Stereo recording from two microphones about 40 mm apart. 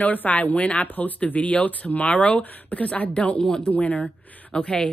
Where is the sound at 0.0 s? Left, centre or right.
Left.